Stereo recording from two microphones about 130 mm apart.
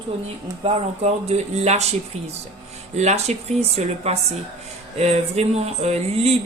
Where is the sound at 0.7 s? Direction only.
50° right (ahead or behind).